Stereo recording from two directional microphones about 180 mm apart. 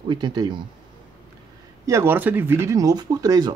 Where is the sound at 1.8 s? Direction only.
15° right (ahead or behind).